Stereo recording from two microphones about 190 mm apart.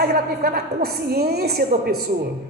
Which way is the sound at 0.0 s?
55° right (ahead or behind).